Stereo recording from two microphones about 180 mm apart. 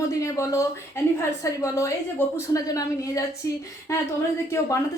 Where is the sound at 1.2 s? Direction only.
15° left (ahead or behind).